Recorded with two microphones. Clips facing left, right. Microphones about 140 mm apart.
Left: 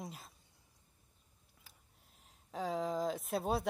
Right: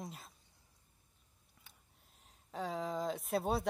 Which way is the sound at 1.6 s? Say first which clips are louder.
Even; centre (ahead or behind).